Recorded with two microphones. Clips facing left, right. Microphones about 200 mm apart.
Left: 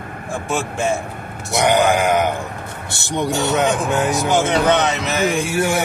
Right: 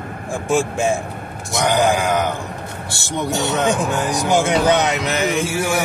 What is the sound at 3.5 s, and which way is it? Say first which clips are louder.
A man's voice: even; centre (ahead or behind).